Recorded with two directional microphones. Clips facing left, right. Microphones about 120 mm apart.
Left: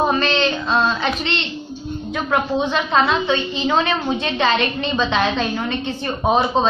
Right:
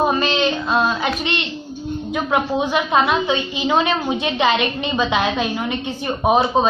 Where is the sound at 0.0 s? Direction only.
10° right (ahead or behind).